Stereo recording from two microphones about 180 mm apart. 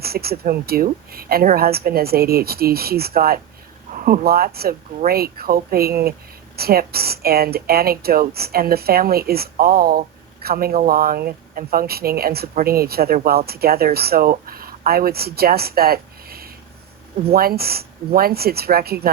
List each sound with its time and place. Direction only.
0.0 s speech: 60° right (ahead or behind)